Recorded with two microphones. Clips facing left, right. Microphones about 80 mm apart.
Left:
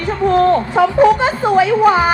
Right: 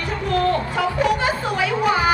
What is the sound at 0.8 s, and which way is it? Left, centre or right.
Speech, left.